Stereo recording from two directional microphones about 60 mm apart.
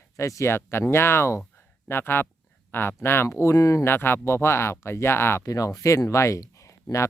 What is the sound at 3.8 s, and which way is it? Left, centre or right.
Speech, left.